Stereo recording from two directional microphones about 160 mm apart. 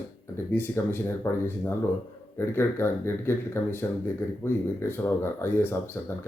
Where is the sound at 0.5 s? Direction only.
15° left (ahead or behind).